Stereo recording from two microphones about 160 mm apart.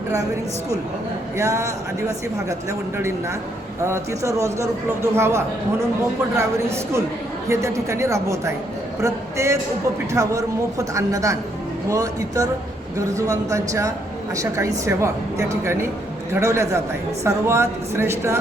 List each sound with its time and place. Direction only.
1.4 s a man's voice: 20° right (ahead or behind)